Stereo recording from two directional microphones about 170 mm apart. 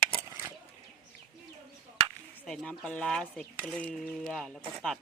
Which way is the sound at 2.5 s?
5° left (ahead or behind).